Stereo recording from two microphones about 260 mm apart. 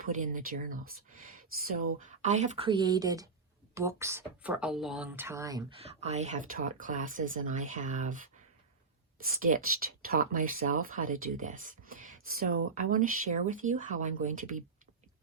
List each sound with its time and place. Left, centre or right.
0.0 s speech: right
9.5 s speech: right